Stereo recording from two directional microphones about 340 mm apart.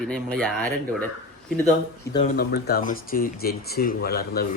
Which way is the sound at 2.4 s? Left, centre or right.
Left.